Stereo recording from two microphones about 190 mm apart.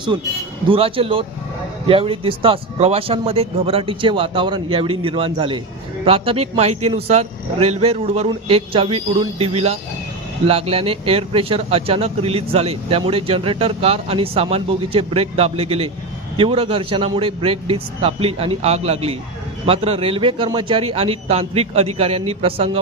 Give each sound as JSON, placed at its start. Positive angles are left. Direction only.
{"t": 0.1, "sound": "speech", "side_deg": -20}